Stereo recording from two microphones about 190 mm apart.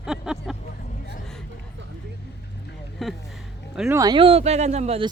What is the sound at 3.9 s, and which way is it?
Speech, 20° right (ahead or behind).